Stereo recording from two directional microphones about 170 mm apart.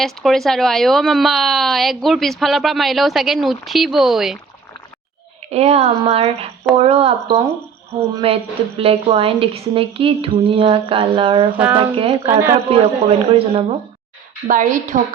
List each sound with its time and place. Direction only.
0.0 s speech: centre (ahead or behind)
5.5 s a woman's voice: 40° right (ahead or behind)
11.5 s speech: 10° right (ahead or behind)
11.9 s a woman's voice: 35° right (ahead or behind)
14.4 s a woman's voice: 50° right (ahead or behind)